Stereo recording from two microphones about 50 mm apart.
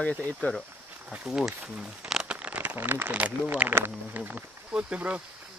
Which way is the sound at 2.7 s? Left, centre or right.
Right.